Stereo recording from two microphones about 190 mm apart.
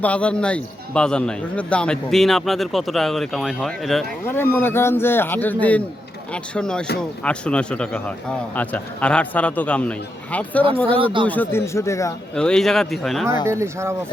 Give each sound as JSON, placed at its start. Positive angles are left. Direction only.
{"t": 0.0, "sound": "a man's voice", "side_deg": 5}
{"t": 4.3, "sound": "a man's voice", "side_deg": 10}
{"t": 10.8, "sound": "speech", "side_deg": -30}
{"t": 11.3, "sound": "speech", "side_deg": 10}
{"t": 12.3, "sound": "a man's voice", "side_deg": 5}
{"t": 13.5, "sound": "speech", "side_deg": -15}